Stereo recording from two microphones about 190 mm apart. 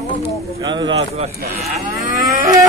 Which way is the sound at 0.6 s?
25° right (ahead or behind).